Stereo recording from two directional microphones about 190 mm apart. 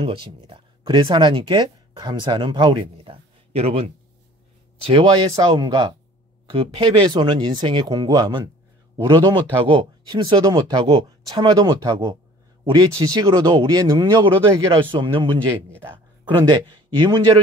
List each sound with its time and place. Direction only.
0.0 s speech: 30° right (ahead or behind)
16.3 s speech: 25° right (ahead or behind)